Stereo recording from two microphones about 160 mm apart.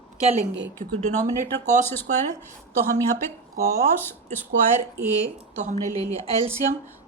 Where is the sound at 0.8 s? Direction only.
55° right (ahead or behind).